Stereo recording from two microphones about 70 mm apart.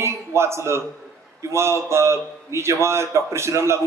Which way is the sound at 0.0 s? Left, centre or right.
Right.